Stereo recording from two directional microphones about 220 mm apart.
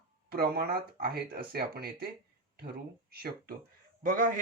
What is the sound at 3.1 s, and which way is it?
Speech, 45° right (ahead or behind).